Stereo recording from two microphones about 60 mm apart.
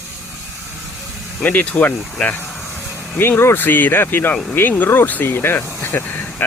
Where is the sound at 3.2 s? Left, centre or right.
Left.